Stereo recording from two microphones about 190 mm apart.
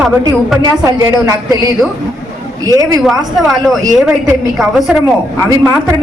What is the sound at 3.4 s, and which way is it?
A man's voice, centre (ahead or behind).